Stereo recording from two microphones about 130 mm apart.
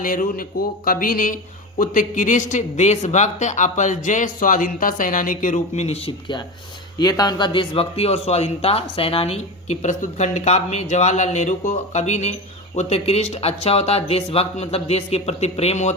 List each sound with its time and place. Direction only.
0.0 s a man's voice: 90° left; by 6.0 s 60° left (ahead or behind)
6.1 s speech: 40° left (ahead or behind); by 16.0 s 60° left (ahead or behind)